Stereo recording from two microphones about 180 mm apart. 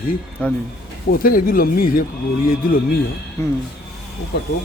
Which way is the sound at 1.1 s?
50° left (ahead or behind).